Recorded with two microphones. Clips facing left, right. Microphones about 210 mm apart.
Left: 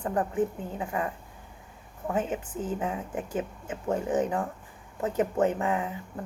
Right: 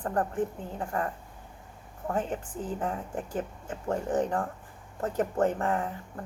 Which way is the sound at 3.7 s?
20° left (ahead or behind).